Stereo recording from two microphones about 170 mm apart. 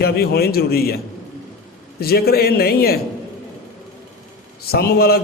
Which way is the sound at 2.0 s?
65° left (ahead or behind).